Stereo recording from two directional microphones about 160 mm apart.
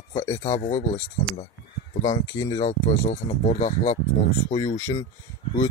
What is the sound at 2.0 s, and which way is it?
Speech, 20° left (ahead or behind).